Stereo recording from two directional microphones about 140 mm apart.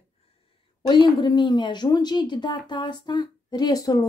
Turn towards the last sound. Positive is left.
turn(degrees=25)  # may be behind; listen again after turning